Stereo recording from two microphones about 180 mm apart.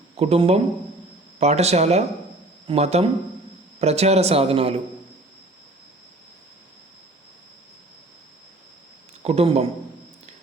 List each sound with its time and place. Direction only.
0.2 s a man's voice: 35° right (ahead or behind)
9.2 s a man's voice: 35° right (ahead or behind)